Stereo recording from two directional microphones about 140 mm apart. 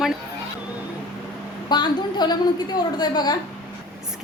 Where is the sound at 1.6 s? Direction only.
30° left (ahead or behind).